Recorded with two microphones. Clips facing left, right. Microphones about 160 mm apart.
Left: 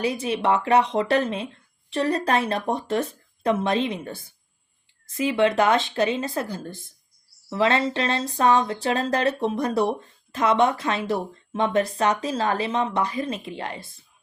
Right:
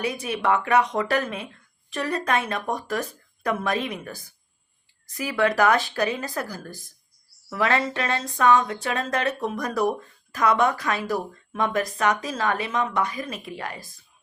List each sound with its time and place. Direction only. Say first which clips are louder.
0.0 s speech: left 2 dB; 30° left (ahead or behind)